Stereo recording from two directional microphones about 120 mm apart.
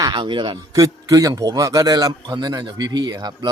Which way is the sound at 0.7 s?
30° right (ahead or behind).